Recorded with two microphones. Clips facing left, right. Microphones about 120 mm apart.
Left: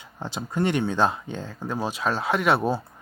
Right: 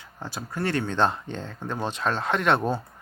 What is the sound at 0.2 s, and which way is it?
Speech, 20° left (ahead or behind).